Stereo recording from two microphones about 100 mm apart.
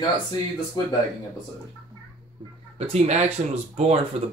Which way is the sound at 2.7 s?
90° right.